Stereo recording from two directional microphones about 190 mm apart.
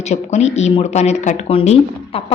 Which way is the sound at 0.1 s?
35° left (ahead or behind).